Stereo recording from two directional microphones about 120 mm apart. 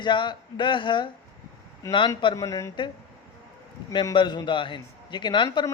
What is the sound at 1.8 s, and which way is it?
Speech, 25° left (ahead or behind).